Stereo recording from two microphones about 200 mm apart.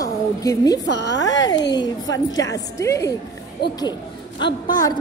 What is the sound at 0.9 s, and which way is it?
Speech, 60° left (ahead or behind).